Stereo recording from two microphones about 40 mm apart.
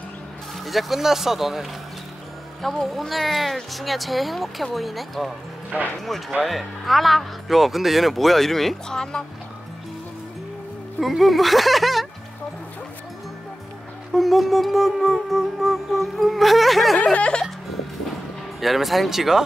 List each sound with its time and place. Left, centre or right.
0.7 s speech: centre
2.8 s music: centre
6.4 s music: centre
11.0 s music: centre
14.1 s music: centre
17.0 s music: left
18.6 s music: centre